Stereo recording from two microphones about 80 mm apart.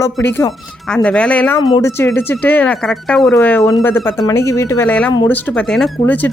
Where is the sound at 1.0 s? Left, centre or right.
Centre.